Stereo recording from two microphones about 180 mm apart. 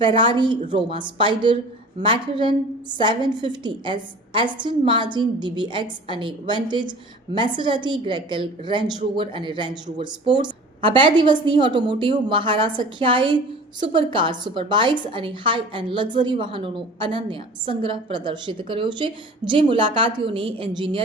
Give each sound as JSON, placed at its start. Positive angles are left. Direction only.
{"t": 0.2, "sound": "a woman's voice", "side_deg": -25}